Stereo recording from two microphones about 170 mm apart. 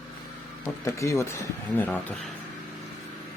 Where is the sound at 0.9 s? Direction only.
15° left (ahead or behind).